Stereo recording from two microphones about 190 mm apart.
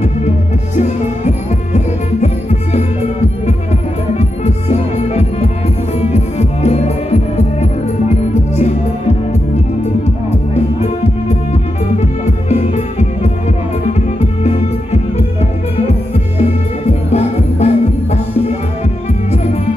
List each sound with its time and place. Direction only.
0.7 s music: 35° left (ahead or behind)
4.2 s music: 35° left (ahead or behind)
10.5 s music: 35° left (ahead or behind)
14.4 s music: 35° left (ahead or behind)
17.1 s music: 35° left (ahead or behind)